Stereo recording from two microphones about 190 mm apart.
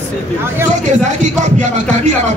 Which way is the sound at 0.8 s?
40° right (ahead or behind).